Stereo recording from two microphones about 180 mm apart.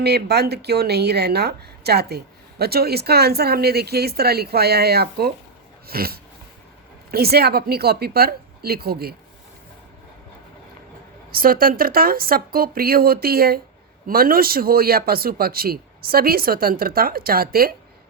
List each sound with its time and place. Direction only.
0.0 s a woman's voice: 65° right (ahead or behind)
11.3 s a woman's voice: 55° right (ahead or behind)